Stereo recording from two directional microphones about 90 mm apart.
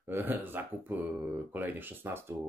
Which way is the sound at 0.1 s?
20° right (ahead or behind).